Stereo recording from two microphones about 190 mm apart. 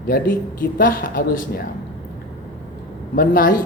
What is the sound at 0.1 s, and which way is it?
A man's voice, 50° left (ahead or behind).